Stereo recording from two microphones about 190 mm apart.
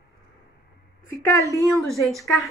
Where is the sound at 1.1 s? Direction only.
15° left (ahead or behind).